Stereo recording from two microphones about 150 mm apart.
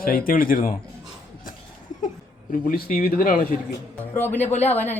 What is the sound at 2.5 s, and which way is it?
A man's voice, 75° left (ahead or behind).